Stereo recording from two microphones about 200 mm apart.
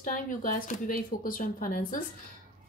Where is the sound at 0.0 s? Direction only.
40° left (ahead or behind).